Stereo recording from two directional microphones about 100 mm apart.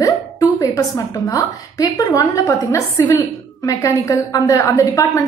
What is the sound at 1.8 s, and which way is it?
A woman's voice, 35° left (ahead or behind).